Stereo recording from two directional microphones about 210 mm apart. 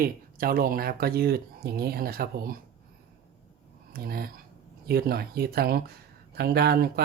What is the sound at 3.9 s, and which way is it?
Speech, 45° right (ahead or behind).